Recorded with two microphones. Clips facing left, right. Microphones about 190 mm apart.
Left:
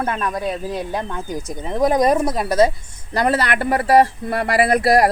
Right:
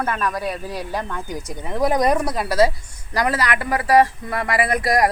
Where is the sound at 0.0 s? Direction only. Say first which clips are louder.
Left 1 dB; 25° left (ahead or behind).